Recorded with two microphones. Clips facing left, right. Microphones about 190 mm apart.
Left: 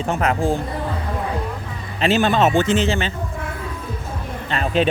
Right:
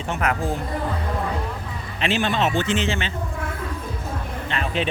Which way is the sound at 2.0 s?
40° left (ahead or behind).